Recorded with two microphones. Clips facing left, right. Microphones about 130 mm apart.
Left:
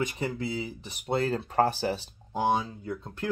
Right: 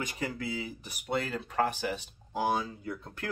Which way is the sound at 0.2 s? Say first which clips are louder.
Left 3 dB; 25° left (ahead or behind).